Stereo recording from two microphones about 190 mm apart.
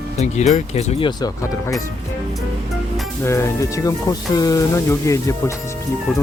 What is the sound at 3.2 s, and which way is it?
Speech, 15° left (ahead or behind).